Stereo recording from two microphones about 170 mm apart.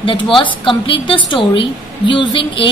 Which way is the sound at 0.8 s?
30° left (ahead or behind).